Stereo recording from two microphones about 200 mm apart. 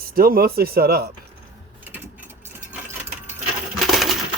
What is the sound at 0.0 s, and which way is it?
Speech, 50° right (ahead or behind).